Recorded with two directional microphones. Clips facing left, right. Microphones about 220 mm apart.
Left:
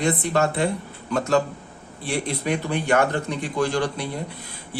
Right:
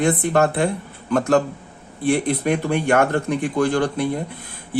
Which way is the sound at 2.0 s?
55° right (ahead or behind).